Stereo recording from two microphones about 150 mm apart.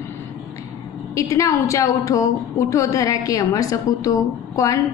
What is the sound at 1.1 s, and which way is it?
A woman's voice, 20° left (ahead or behind).